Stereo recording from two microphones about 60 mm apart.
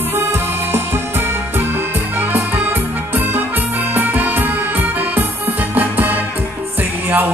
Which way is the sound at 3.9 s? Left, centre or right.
Right.